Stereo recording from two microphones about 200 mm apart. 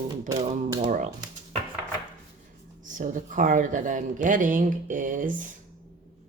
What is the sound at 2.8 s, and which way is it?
Speech, 40° right (ahead or behind).